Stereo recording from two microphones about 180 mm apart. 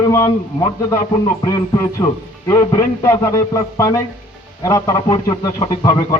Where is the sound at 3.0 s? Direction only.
15° left (ahead or behind).